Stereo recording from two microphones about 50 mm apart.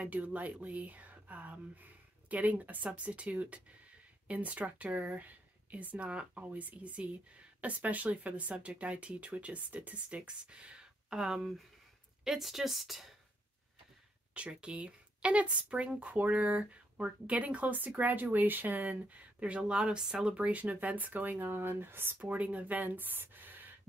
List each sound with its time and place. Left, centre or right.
0.0 s a woman's voice: right; by 13.1 s centre
14.3 s speech: right
20.3 s speech: right
22.2 s speech: right